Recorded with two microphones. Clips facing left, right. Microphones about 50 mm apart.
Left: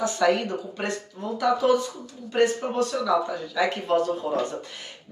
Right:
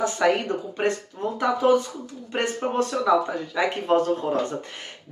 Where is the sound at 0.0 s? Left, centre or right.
Right.